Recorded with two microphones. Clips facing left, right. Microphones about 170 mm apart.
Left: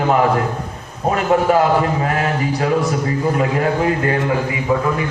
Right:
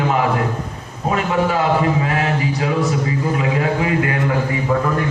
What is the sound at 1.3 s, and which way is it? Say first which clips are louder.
A man's voice: left 4 dB; 50° left (ahead or behind).